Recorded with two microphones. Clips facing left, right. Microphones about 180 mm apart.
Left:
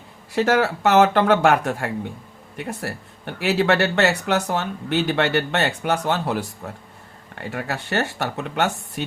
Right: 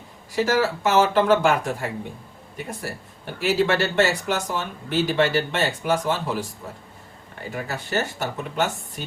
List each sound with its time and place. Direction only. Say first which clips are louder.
0.3 s speech: left 2 dB; 65° left (ahead or behind)